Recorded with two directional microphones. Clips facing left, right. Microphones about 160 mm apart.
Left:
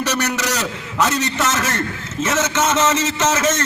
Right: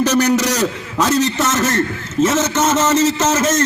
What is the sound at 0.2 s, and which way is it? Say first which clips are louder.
A man's voice: right 7 dB; 30° right (ahead or behind).